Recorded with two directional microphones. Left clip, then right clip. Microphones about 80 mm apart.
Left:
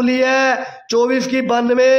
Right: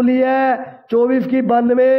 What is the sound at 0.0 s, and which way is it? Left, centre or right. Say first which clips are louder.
A man's voice: even; right.